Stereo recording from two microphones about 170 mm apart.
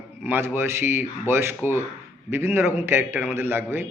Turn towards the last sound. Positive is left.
turn(degrees=-15)  # may be behind; listen again after turning